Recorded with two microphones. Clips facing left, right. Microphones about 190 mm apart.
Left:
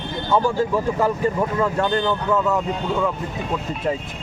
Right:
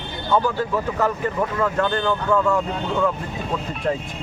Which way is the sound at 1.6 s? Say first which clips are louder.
Even; 25° left (ahead or behind).